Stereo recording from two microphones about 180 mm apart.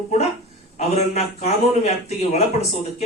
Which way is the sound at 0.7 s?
35° left (ahead or behind).